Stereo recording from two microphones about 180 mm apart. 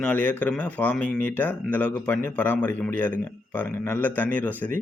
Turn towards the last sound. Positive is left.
turn(degrees=10)  # may be behind; listen again after turning